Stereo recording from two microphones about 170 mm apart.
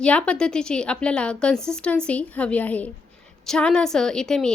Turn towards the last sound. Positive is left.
turn(degrees=5)  # may be behind; listen again after turning